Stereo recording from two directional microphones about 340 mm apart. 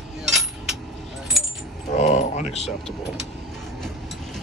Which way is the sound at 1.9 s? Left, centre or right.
Centre.